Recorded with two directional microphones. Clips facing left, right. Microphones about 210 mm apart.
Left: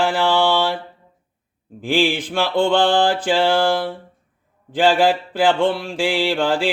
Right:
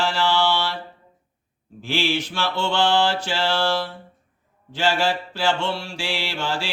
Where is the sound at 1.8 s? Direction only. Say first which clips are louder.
Left 5 dB; 50° left (ahead or behind).